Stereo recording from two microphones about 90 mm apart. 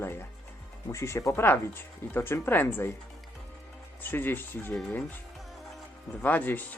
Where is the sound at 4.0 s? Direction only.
20° left (ahead or behind).